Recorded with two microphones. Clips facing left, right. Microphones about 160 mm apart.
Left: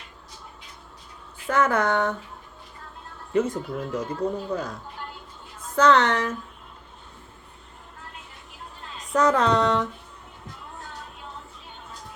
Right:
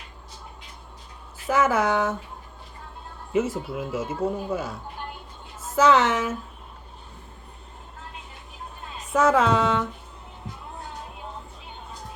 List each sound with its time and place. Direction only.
1.5 s a woman's voice: 5° right (ahead or behind)
3.3 s a woman's voice: 5° right (ahead or behind)
9.1 s a woman's voice: 5° right (ahead or behind)